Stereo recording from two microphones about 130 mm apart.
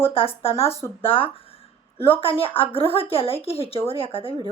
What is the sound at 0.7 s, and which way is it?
Speech, 20° left (ahead or behind).